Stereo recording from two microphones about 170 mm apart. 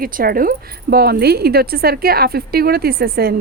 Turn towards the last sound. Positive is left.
turn(degrees=-65)  # may be behind; listen again after turning